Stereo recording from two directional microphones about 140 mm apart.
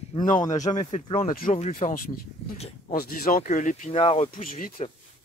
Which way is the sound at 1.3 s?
90° left.